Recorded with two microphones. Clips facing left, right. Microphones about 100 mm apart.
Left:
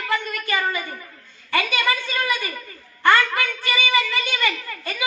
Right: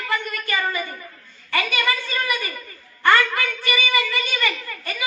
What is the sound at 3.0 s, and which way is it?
A woman's voice, 20° left (ahead or behind).